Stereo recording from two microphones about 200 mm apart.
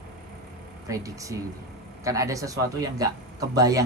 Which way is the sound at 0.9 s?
15° right (ahead or behind).